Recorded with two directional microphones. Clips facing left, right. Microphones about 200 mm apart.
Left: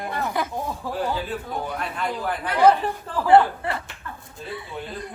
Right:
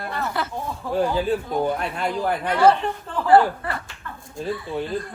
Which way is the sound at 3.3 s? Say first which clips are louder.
Even; 25° left (ahead or behind).